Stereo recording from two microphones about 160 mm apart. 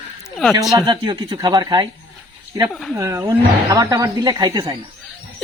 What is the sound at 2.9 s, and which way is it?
Speech, 20° right (ahead or behind).